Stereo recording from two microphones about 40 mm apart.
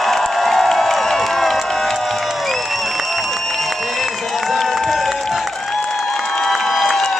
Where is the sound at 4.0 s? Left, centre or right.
Centre.